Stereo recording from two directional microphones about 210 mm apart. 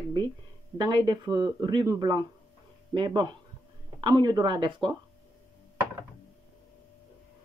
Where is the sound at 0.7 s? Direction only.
20° right (ahead or behind).